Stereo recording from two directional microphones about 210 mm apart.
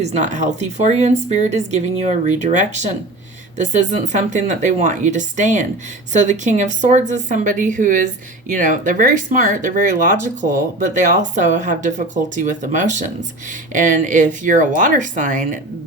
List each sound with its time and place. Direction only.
0.0 s speech: 35° right (ahead or behind)